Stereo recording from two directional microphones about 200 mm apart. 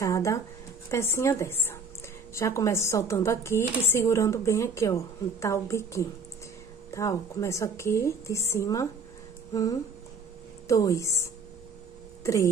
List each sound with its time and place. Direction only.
0.0 s a woman's voice: 15° left (ahead or behind)
9.5 s a sound: 15° left (ahead or behind)
10.7 s a woman's voice: 15° left (ahead or behind)